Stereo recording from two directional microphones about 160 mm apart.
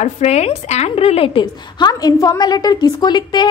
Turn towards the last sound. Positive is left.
turn(degrees=25)  # may be behind; listen again after turning